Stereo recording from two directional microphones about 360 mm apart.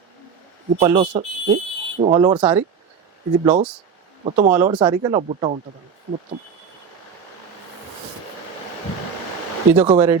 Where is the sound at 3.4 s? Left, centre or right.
Centre.